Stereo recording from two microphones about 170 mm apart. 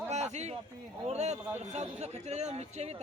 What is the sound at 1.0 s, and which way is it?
Speech, 40° right (ahead or behind).